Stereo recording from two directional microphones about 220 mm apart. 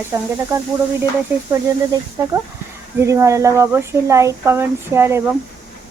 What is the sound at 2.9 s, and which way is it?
Speech, 15° right (ahead or behind).